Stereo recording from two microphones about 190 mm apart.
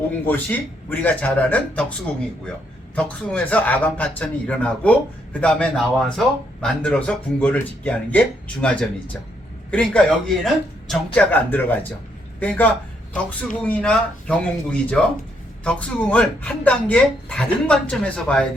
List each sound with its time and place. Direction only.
0.3 s a man's voice: 10° left (ahead or behind)
2.9 s a man's voice: 10° left (ahead or behind)